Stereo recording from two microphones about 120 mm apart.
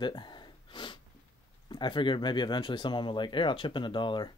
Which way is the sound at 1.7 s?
40° left (ahead or behind).